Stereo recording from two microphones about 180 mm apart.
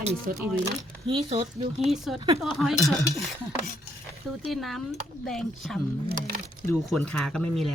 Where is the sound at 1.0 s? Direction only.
30° right (ahead or behind).